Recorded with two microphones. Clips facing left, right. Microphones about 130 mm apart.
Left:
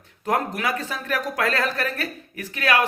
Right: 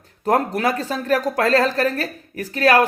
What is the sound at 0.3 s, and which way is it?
Speech, 35° right (ahead or behind).